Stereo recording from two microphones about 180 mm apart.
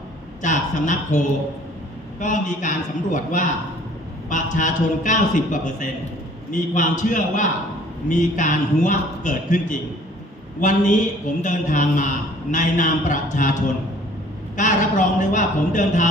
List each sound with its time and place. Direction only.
0.4 s a woman's voice: 45° left (ahead or behind)